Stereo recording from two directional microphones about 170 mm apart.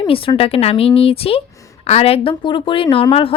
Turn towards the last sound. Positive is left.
turn(degrees=35)  # may be behind; listen again after turning